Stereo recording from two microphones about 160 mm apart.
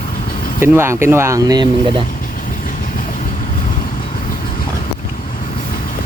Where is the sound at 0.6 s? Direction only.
15° right (ahead or behind).